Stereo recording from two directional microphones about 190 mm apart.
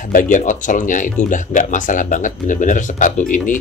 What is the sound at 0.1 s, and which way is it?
Speech, 45° left (ahead or behind).